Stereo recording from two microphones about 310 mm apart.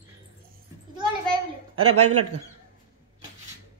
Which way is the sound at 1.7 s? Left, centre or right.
Right.